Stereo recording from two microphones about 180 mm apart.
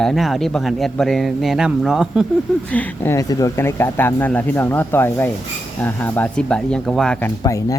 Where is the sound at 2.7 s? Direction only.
10° left (ahead or behind).